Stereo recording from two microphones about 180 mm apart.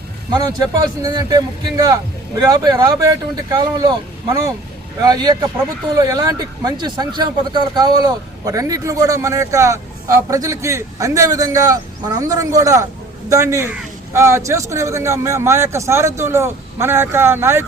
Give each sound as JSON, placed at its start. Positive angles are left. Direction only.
{"t": 0.3, "sound": "a man's voice", "side_deg": -20}